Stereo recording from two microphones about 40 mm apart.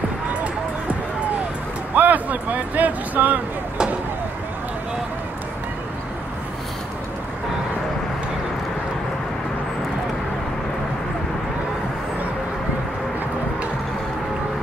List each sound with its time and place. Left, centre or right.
2.0 s speech: right